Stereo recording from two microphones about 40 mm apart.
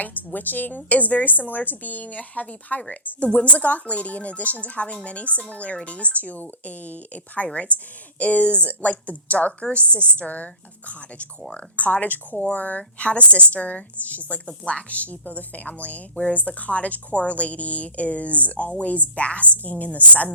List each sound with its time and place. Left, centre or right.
0.0 s a woman's voice: left
0.9 s a woman's voice: left